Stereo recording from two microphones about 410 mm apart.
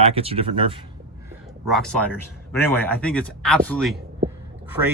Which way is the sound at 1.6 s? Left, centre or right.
Centre.